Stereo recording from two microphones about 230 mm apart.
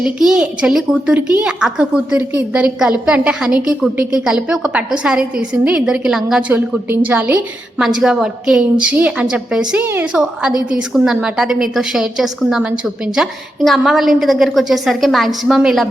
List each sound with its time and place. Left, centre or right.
0.0 s a woman's voice: centre